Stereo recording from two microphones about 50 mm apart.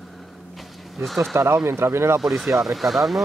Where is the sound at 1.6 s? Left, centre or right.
Right.